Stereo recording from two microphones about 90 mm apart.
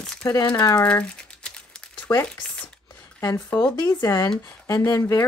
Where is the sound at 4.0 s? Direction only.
45° left (ahead or behind).